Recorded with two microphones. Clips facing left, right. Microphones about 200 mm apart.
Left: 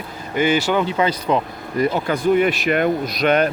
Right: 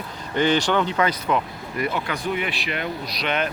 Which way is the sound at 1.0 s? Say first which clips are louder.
Left 3 dB; 30° left (ahead or behind).